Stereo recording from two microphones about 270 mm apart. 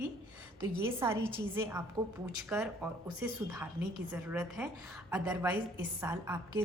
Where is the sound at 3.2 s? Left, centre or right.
Centre.